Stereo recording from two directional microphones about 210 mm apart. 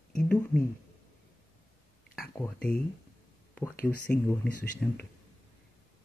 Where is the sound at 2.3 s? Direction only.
10° left (ahead or behind).